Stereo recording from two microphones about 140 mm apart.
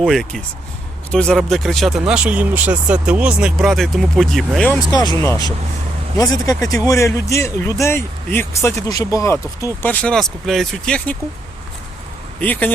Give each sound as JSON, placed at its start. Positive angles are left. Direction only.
{"t": 0.0, "sound": "speech", "side_deg": 0}
{"t": 4.9, "sound": "speech", "side_deg": 25}
{"t": 12.4, "sound": "speech", "side_deg": 15}